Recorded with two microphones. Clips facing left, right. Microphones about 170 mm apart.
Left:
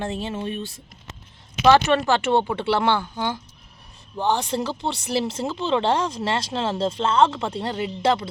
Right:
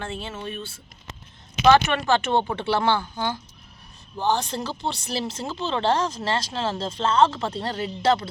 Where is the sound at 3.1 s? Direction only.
20° left (ahead or behind).